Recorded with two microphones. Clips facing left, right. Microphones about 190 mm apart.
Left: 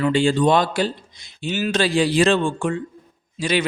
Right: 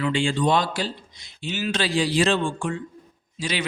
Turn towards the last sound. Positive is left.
turn(degrees=50)  # may be behind; listen again after turning